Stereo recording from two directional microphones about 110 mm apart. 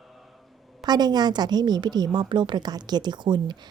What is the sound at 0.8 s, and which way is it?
A woman's voice, 40° right (ahead or behind).